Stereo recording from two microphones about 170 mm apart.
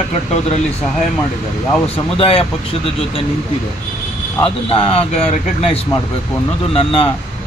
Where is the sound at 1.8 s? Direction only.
35° left (ahead or behind).